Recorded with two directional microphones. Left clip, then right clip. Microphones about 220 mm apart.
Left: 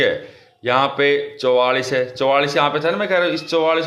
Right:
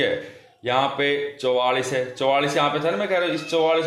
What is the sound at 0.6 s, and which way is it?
Speech, 25° left (ahead or behind).